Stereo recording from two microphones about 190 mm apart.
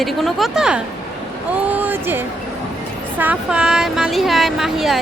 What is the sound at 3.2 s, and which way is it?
Speech, 5° right (ahead or behind).